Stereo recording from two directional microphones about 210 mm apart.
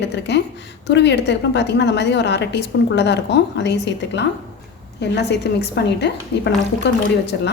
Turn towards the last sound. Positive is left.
turn(degrees=55)  # may be behind; listen again after turning